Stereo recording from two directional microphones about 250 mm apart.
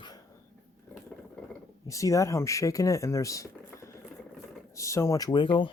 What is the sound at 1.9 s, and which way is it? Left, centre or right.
Speech, centre.